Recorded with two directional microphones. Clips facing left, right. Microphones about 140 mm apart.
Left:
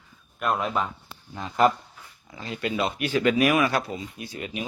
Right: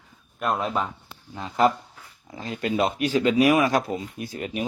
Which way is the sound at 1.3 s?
25° right (ahead or behind).